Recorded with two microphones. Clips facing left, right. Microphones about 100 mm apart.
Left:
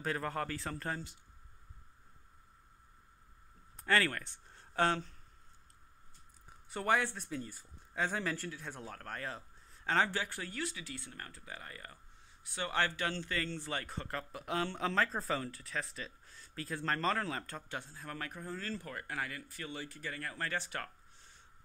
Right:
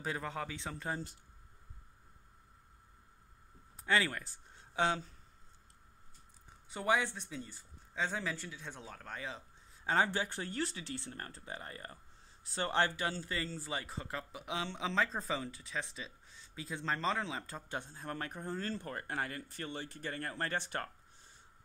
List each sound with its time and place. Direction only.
0.0 s speech: 5° right (ahead or behind)
3.7 s speech: 10° right (ahead or behind)
6.7 s speech: centre (ahead or behind)
9.8 s speech: 20° right (ahead or behind); by 12.8 s 35° right (ahead or behind)
12.8 s a man's voice: 15° right (ahead or behind); by 16.0 s centre (ahead or behind)
16.0 s a sound: 5° right (ahead or behind)
16.6 s speech: 5° right (ahead or behind)
17.6 s speech: 20° right (ahead or behind)